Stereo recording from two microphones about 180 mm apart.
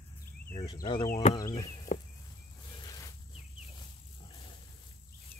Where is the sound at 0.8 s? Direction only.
25° left (ahead or behind).